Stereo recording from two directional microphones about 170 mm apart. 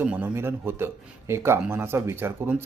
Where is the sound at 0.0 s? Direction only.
10° right (ahead or behind).